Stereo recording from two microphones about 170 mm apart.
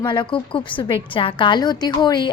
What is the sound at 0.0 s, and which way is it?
A woman's voice, 30° left (ahead or behind).